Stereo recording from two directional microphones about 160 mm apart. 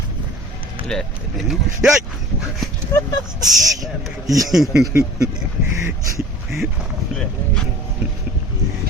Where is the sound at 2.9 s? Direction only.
20° left (ahead or behind).